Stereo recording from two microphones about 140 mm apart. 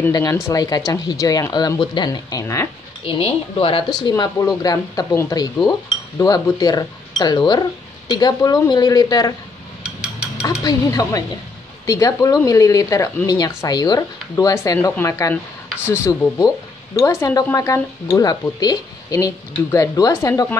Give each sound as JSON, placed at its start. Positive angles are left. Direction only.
{"t": 0.1, "sound": "speech", "side_deg": 25}
{"t": 3.0, "sound": "speech", "side_deg": 40}
{"t": 4.2, "sound": "speech", "side_deg": 25}
{"t": 10.4, "sound": "speech", "side_deg": 25}